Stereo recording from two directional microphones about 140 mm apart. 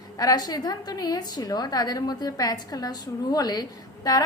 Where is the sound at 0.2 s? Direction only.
30° left (ahead or behind).